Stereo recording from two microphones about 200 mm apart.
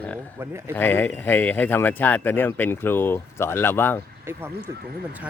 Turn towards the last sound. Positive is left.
turn(degrees=-10)  # may be behind; listen again after turning